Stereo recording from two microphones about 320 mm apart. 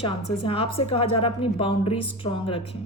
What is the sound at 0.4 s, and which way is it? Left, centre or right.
A woman's voice, centre.